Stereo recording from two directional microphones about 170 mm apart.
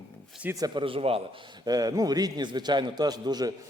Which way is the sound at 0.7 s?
30° right (ahead or behind).